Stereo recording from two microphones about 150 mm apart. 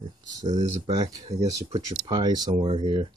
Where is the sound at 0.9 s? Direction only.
25° right (ahead or behind).